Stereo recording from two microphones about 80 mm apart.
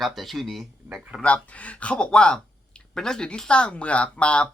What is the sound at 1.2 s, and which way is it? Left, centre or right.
Speech, centre.